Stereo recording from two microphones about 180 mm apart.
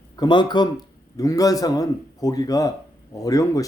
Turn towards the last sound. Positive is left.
turn(degrees=20)  # may be behind; listen again after turning